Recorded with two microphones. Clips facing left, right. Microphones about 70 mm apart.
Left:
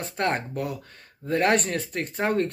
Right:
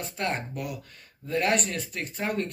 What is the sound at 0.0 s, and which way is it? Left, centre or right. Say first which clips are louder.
Speech: left 4 dB; left.